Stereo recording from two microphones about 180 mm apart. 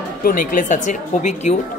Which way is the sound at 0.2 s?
50° left (ahead or behind).